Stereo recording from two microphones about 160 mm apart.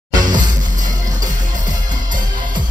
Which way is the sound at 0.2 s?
25° right (ahead or behind).